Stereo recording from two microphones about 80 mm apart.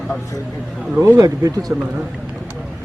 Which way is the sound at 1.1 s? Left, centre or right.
Right.